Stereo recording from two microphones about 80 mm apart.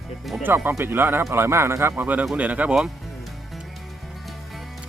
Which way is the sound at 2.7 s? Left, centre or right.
Centre.